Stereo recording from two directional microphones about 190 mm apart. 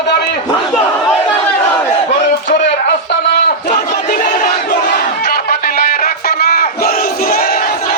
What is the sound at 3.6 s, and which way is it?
Battle cry, 45° left (ahead or behind).